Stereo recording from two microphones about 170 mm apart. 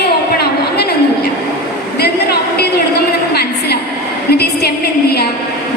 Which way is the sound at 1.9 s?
70° left (ahead or behind).